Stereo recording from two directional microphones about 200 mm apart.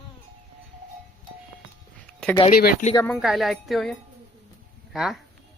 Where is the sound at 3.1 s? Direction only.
Centre (ahead or behind).